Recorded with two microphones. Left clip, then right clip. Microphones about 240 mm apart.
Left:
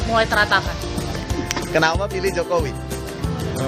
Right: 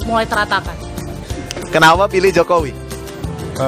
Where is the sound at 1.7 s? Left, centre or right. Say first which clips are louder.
Right 10 dB; right.